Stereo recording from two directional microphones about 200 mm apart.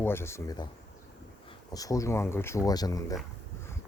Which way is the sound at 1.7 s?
15° left (ahead or behind).